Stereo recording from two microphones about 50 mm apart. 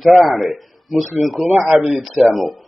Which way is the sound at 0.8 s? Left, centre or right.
Centre.